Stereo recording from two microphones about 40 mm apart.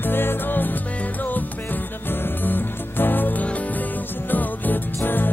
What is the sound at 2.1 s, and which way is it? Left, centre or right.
Music, left.